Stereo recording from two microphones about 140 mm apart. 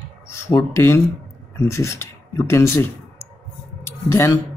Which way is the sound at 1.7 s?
20° left (ahead or behind).